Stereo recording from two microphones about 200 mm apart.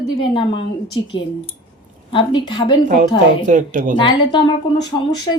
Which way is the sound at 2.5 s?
20° left (ahead or behind).